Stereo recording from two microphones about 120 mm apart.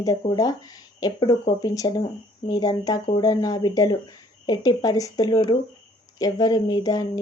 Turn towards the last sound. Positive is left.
turn(degrees=30)  # may be behind; listen again after turning